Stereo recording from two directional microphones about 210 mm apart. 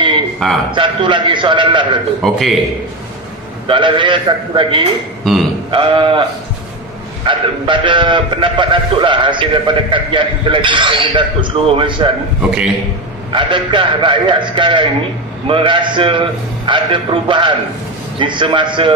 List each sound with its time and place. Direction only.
0.4 s a man's voice: centre (ahead or behind)
0.7 s speech: 25° right (ahead or behind)
2.2 s a man's voice: centre (ahead or behind)
3.6 s speech: 25° right (ahead or behind)
5.2 s a man's voice: centre (ahead or behind)
5.7 s speech: 25° right (ahead or behind)
7.2 s speech: 25° right (ahead or behind)
12.4 s a man's voice: 5° right (ahead or behind)
13.3 s speech: 25° right (ahead or behind)